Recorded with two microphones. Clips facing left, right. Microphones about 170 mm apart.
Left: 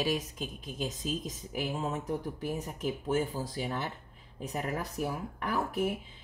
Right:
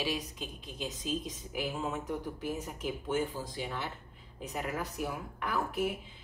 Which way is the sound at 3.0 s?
40° left (ahead or behind).